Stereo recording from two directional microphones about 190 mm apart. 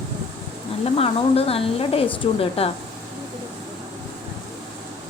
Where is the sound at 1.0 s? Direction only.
30° left (ahead or behind).